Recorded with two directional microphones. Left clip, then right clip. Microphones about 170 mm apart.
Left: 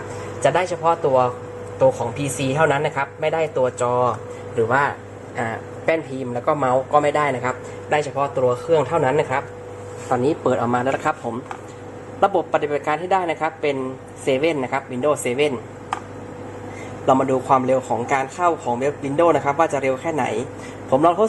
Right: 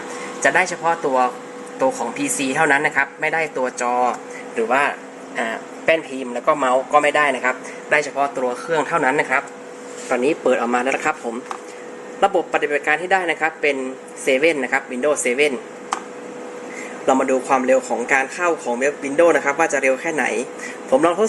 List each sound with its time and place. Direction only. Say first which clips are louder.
0.4 s a man's voice: right 1 dB; centre (ahead or behind)
10.5 s a man's voice: right 2 dB; 10° left (ahead or behind)
12.2 s a man's voice: right 1 dB; 10° left (ahead or behind)
17.1 s a man's voice: even; 10° left (ahead or behind)